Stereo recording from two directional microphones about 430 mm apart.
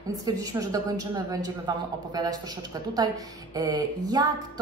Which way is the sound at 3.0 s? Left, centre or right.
Centre.